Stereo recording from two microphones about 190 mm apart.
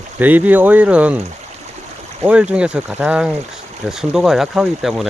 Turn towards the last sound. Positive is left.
turn(degrees=0)  # may be behind; listen again after turning